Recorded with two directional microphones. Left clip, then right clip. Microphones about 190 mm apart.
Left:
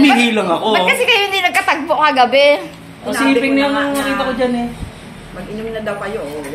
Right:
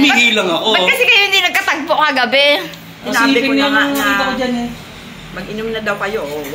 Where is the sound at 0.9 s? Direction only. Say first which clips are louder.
Right 2 dB; 10° left (ahead or behind).